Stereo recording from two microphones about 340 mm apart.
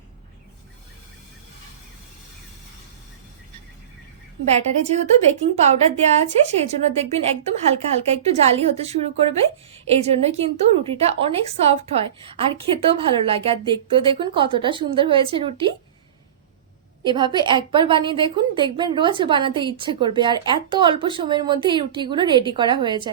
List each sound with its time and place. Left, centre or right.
4.5 s a woman's voice: centre
17.0 s a woman's voice: centre